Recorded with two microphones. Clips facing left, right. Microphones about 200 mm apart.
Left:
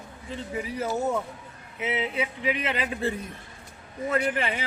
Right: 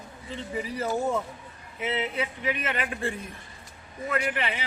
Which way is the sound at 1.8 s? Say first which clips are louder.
Left 1 dB; 15° left (ahead or behind).